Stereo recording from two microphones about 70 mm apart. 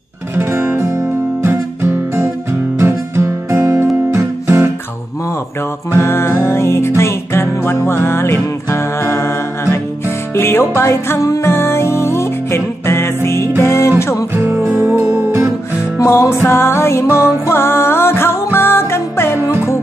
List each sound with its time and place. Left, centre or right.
0.4 s music: right
0.7 s music: right
1.4 s guitar: right
4.1 s music: right
5.9 s music: left
11.4 s music: left
14.3 s music: right
16.0 s music: left